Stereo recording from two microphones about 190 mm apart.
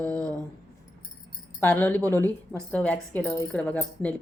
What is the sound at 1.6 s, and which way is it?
A woman's voice, 10° left (ahead or behind).